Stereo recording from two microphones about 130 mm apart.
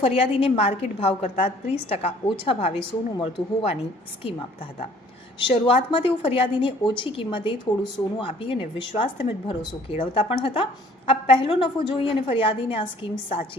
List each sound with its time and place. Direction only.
0.0 s a woman's voice: 50° left (ahead or behind)
5.4 s a woman's voice: 45° left (ahead or behind)